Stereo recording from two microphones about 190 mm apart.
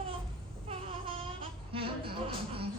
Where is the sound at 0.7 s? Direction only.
30° right (ahead or behind).